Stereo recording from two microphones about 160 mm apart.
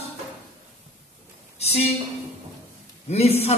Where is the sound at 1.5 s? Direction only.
40° left (ahead or behind).